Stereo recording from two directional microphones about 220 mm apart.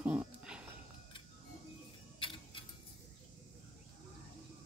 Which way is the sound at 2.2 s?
25° left (ahead or behind).